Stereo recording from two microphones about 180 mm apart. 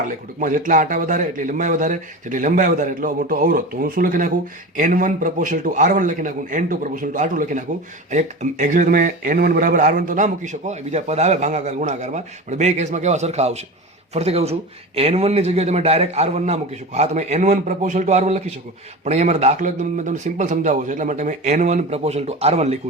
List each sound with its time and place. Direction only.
0.0 s a man's voice: 45° right (ahead or behind)